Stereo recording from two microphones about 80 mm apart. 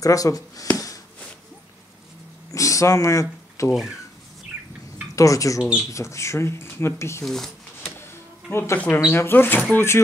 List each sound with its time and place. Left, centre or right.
0.0 s speech: left
2.5 s speech: left
5.1 s speech: left
5.6 s speech: centre
5.9 s speech: left
7.2 s speech: centre
8.5 s speech: left
8.7 s speech: centre